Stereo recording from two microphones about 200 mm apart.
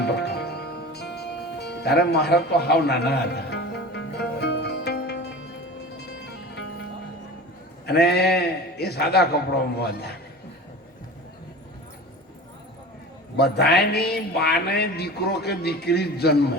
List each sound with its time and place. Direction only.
0.0 s music: 55° left (ahead or behind)
7.9 s a man's voice: 55° left (ahead or behind)
13.3 s a man's voice: 55° left (ahead or behind)